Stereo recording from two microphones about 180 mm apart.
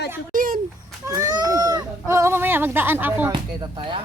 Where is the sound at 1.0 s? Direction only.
15° right (ahead or behind).